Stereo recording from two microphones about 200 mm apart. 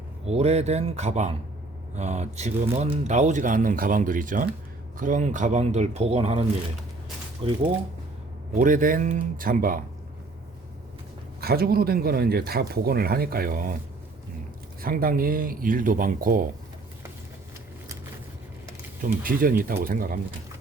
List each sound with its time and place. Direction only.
0.3 s speech: 35° right (ahead or behind)
7.4 s speech: 30° right (ahead or behind)
8.5 s speech: 40° right (ahead or behind)
11.3 s speech: 50° right (ahead or behind)
14.8 s speech: 45° right (ahead or behind)
19.0 s speech: 45° right (ahead or behind)